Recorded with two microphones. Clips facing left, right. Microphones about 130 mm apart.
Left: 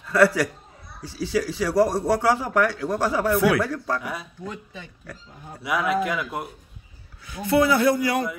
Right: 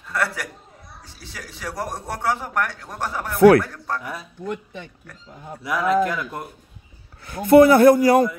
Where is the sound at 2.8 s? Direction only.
90° left.